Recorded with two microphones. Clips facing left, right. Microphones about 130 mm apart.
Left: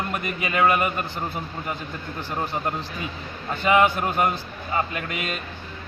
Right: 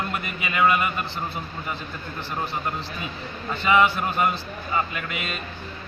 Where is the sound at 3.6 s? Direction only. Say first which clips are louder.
Left 1 dB; 45° left (ahead or behind).